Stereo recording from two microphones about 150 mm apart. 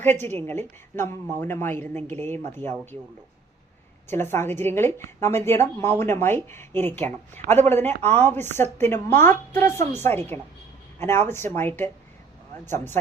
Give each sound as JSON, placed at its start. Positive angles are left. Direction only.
{"t": 0.0, "sound": "a woman's voice", "side_deg": 15}
{"t": 4.1, "sound": "a woman's voice", "side_deg": 15}